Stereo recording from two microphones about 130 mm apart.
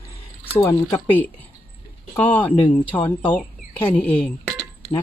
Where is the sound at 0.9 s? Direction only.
15° left (ahead or behind).